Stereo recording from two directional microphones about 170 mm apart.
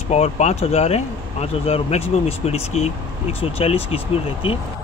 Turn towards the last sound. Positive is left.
turn(degrees=35)  # may be behind; listen again after turning